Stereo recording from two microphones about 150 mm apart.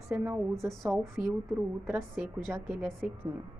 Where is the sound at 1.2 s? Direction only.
5° right (ahead or behind).